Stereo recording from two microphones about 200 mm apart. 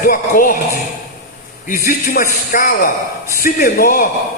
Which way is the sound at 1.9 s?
45° left (ahead or behind).